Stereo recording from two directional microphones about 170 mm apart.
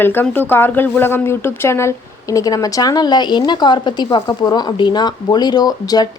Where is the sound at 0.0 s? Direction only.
10° left (ahead or behind).